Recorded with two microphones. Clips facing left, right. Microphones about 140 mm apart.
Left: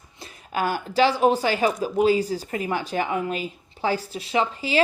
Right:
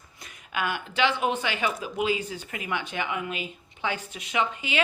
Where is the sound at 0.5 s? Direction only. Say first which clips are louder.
Left 6 dB; 35° left (ahead or behind).